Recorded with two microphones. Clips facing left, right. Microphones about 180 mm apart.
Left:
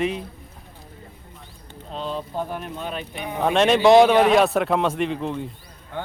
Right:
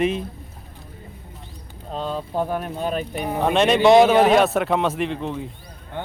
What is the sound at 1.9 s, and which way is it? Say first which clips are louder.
Speech: right 2 dB; 45° right (ahead or behind).